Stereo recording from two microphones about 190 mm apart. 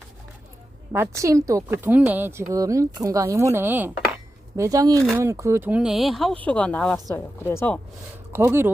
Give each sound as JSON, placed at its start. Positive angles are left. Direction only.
{"t": 0.9, "sound": "speech", "side_deg": -15}
{"t": 8.3, "sound": "speech", "side_deg": -10}